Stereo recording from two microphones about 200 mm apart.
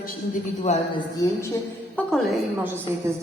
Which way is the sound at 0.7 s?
35° left (ahead or behind).